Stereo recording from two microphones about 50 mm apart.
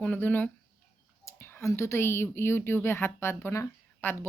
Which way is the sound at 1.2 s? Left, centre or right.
Left.